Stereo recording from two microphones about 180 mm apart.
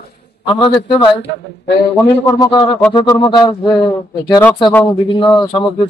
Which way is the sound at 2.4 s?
20° left (ahead or behind).